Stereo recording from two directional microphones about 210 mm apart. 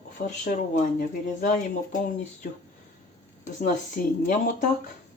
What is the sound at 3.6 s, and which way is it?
Speech, 40° left (ahead or behind).